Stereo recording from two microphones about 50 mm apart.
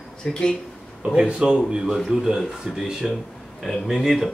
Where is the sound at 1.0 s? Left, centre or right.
Centre.